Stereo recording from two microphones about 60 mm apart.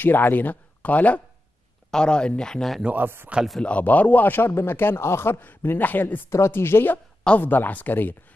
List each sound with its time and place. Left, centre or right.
0.0 s speech: left
1.9 s speech: centre
2.8 s speech: right
3.6 s speech: left
6.3 s speech: left
7.2 s speech: left